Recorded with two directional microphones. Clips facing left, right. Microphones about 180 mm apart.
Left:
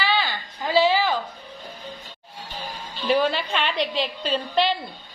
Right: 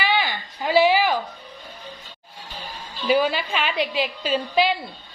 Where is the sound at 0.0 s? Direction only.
15° right (ahead or behind).